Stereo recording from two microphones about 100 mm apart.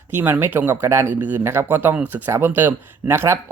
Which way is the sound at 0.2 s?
20° right (ahead or behind).